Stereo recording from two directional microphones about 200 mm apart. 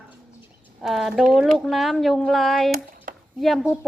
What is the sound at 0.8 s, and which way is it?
Speech, centre (ahead or behind).